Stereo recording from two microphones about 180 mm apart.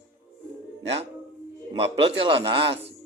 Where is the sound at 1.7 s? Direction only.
30° right (ahead or behind).